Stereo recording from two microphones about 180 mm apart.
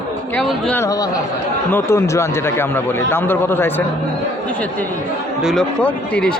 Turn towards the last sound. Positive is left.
turn(degrees=5)  # may be behind; listen again after turning